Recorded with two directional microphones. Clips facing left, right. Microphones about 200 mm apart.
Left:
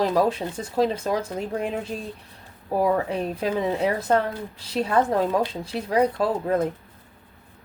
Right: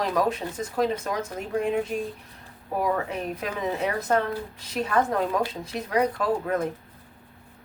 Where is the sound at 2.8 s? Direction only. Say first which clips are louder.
Left 4 dB; 30° left (ahead or behind).